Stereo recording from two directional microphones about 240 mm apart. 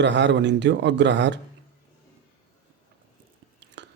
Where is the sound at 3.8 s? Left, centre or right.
Right.